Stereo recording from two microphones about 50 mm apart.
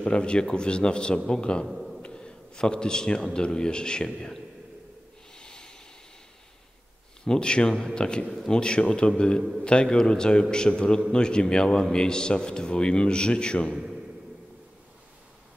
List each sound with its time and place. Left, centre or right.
0.0 s a man's voice: centre
1.7 s a sound: centre
2.0 s a sound: centre
3.3 s a man's voice: centre
5.3 s snort: centre
7.2 s a man's voice: centre